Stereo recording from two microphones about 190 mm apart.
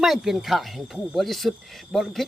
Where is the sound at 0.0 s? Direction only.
Centre (ahead or behind).